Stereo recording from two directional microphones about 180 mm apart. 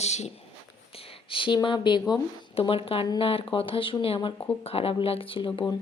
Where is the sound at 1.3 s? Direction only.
25° left (ahead or behind).